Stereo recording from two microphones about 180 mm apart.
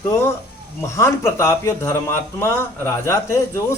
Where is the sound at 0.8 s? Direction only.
15° left (ahead or behind).